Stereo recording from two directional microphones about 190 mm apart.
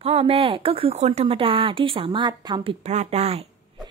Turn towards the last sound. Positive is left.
turn(degrees=-35)  # may be behind; listen again after turning